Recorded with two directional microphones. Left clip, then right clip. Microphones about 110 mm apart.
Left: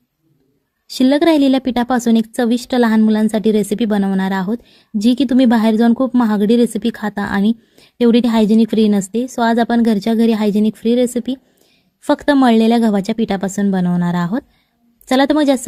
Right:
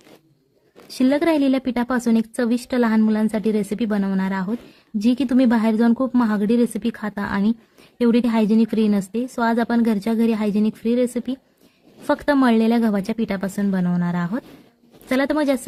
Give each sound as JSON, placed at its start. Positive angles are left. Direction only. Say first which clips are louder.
{"t": 0.9, "sound": "speech", "louder": "left 6 dB", "side_deg": 35}